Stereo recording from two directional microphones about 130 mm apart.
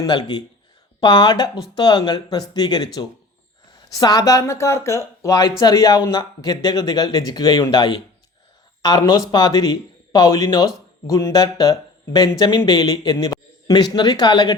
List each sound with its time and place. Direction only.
0.0 s speech: 35° left (ahead or behind)